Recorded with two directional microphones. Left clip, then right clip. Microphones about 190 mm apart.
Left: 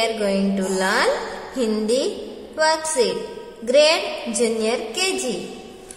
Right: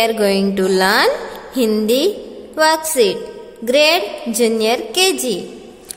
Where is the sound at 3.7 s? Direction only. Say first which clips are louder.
Right 3 dB; 40° right (ahead or behind).